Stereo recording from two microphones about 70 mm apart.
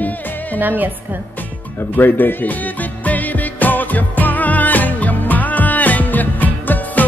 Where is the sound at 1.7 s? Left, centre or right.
Left.